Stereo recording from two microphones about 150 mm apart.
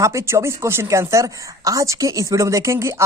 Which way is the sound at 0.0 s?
20° right (ahead or behind).